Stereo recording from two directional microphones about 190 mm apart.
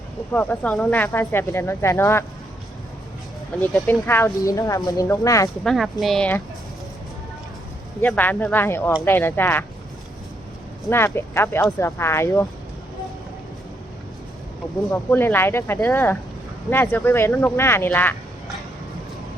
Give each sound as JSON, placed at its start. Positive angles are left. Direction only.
{"t": 0.3, "sound": "speech", "side_deg": 5}
{"t": 3.7, "sound": "speech", "side_deg": 0}
{"t": 4.0, "sound": "speech", "side_deg": 15}
{"t": 5.6, "sound": "speech", "side_deg": 0}
{"t": 8.0, "sound": "speech", "side_deg": 10}
{"t": 10.8, "sound": "speech", "side_deg": 15}
{"t": 14.8, "sound": "speech", "side_deg": 10}